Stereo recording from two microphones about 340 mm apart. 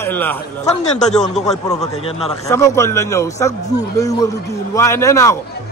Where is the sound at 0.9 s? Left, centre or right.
Centre.